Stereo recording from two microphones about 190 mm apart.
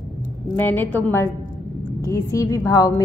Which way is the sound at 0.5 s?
10° left (ahead or behind).